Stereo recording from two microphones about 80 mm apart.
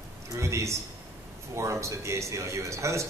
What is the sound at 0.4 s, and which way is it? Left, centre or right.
A man's voice, right.